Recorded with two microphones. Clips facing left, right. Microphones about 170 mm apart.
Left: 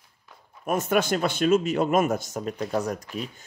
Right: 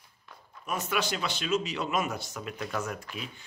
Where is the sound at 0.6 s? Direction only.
50° left (ahead or behind).